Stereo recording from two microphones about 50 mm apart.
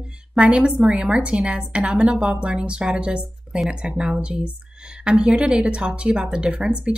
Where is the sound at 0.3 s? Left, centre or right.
Right.